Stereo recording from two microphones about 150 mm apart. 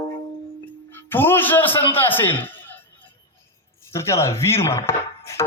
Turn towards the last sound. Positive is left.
turn(degrees=20)  # may be behind; listen again after turning